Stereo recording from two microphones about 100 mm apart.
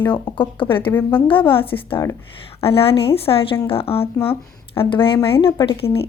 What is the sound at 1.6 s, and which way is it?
Speech, 60° left (ahead or behind).